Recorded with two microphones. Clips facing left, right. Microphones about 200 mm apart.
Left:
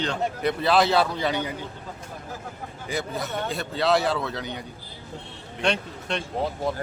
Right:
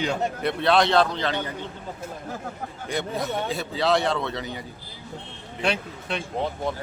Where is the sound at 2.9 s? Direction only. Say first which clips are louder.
Right 2 dB; centre (ahead or behind).